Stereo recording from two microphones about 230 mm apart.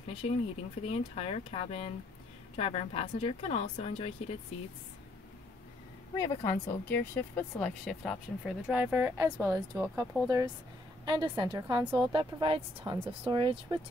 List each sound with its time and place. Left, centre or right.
0.2 s speech: left
6.1 s speech: centre; by 13.7 s right